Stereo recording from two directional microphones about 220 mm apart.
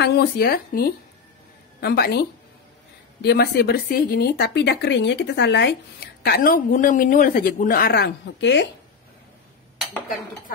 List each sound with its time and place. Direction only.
0.0 s speech: 45° left (ahead or behind)